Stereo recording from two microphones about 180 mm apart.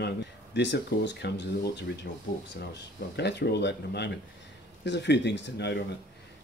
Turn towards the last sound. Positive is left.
turn(degrees=70)  # may be behind; listen again after turning